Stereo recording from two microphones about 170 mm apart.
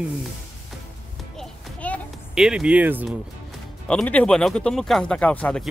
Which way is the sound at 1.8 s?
10° left (ahead or behind).